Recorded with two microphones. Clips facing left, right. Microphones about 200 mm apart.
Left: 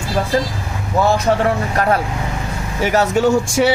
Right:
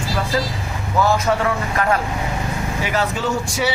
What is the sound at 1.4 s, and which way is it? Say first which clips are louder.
Speech: left 3 dB; 35° left (ahead or behind).